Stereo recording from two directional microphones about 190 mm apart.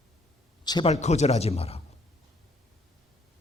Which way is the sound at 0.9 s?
35° left (ahead or behind).